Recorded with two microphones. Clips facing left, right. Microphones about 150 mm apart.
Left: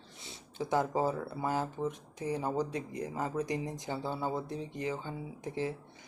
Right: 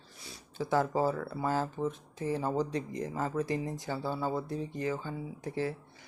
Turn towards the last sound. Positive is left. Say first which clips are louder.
# right 1 dB
turn(degrees=20)  # may be behind; listen again after turning